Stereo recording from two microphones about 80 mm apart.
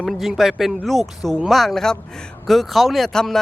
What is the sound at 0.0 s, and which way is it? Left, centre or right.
Speech, centre.